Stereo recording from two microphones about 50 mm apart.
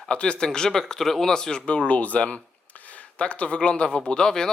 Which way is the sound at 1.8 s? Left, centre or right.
Left.